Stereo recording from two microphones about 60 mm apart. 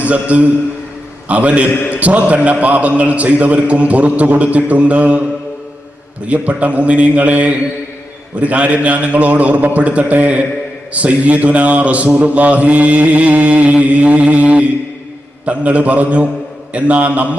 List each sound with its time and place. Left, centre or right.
0.0 s mantra: right
6.2 s mantra: right